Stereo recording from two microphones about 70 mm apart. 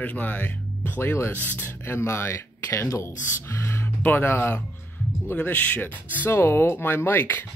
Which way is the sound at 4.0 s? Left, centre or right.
Left.